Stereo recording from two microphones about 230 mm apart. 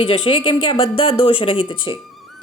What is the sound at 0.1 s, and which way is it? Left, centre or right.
A woman's voice, left.